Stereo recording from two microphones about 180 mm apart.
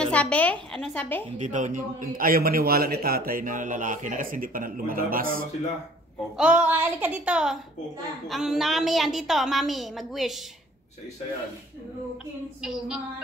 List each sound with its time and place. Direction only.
0.0 s a woman's voice: 5° left (ahead or behind)
1.4 s a man's voice: 45° right (ahead or behind)
6.3 s a woman's voice: 5° right (ahead or behind)
12.6 s a woman's voice: centre (ahead or behind)